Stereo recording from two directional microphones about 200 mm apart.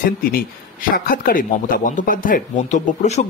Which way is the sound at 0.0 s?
45° left (ahead or behind).